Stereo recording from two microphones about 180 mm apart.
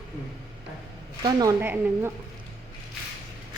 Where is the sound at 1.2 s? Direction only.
20° right (ahead or behind).